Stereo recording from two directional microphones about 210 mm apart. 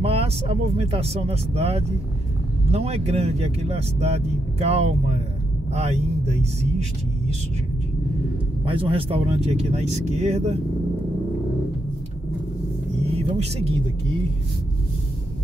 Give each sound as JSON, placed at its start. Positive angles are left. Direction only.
{"t": 0.0, "sound": "speech", "side_deg": -25}
{"t": 8.6, "sound": "speech", "side_deg": -25}
{"t": 13.4, "sound": "speech", "side_deg": -30}